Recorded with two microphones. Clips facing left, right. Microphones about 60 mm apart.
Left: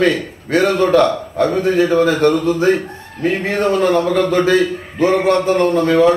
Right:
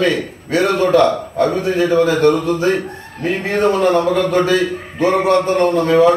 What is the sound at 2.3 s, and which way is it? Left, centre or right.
A man's voice, right.